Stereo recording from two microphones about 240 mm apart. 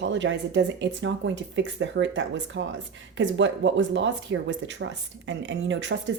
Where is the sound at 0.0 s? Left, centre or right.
Right.